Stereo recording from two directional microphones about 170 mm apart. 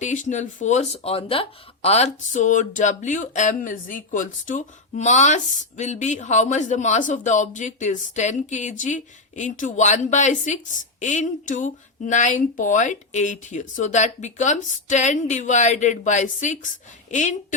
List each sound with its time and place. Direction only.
0.0 s a woman's voice: 45° left (ahead or behind)